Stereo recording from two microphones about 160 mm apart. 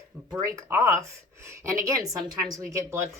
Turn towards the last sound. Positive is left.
turn(degrees=-20)  # may be behind; listen again after turning